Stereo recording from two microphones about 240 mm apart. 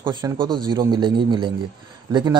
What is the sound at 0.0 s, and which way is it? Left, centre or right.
Speech, centre.